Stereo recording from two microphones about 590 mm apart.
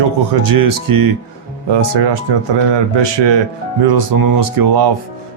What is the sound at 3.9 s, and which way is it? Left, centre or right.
Speech, right.